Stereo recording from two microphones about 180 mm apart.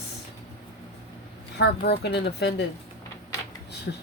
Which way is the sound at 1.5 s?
65° left (ahead or behind).